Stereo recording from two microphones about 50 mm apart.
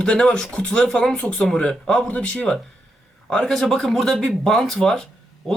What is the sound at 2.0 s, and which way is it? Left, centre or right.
Speech, left.